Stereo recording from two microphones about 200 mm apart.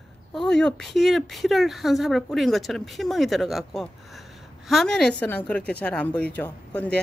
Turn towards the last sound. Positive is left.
turn(degrees=5)  # may be behind; listen again after turning